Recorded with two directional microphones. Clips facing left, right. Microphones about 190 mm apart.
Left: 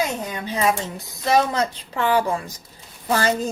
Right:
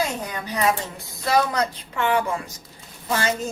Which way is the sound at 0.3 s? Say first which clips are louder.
Left 1 dB; 25° left (ahead or behind).